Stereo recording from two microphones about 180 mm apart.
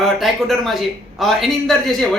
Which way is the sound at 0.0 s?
Centre (ahead or behind).